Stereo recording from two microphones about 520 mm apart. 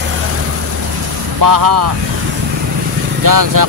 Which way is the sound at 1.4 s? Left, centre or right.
Right.